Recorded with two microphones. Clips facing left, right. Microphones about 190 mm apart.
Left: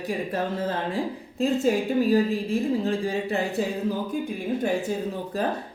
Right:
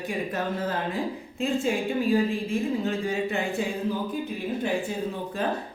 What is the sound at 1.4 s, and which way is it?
A woman's voice, 40° left (ahead or behind).